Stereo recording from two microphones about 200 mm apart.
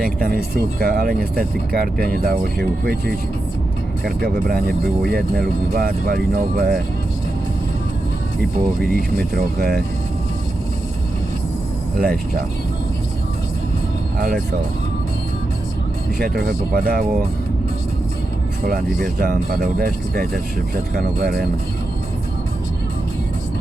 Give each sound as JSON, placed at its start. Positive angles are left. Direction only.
{"t": 0.0, "sound": "speech", "side_deg": -50}
{"t": 8.8, "sound": "speech", "side_deg": -50}
{"t": 11.9, "sound": "speech", "side_deg": -45}
{"t": 14.2, "sound": "speech", "side_deg": -50}
{"t": 16.1, "sound": "speech", "side_deg": -50}
{"t": 19.0, "sound": "speech", "side_deg": -45}